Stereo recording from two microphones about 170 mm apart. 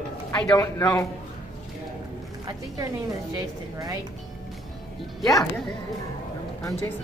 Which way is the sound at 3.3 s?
20° right (ahead or behind).